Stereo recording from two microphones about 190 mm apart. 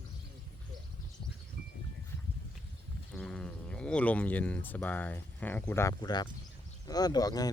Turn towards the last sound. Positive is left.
turn(degrees=20)  # may be behind; listen again after turning